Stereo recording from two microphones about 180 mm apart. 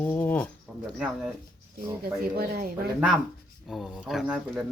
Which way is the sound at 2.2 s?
55° right (ahead or behind).